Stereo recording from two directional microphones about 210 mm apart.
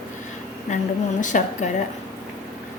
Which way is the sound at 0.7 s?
35° left (ahead or behind).